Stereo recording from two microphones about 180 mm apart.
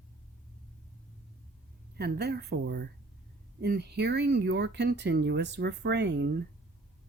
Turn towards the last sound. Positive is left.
turn(degrees=-65)  # may be behind; listen again after turning